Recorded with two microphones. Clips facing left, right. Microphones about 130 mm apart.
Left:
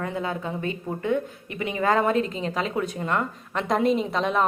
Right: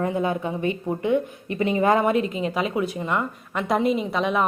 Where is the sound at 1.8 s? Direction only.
15° right (ahead or behind).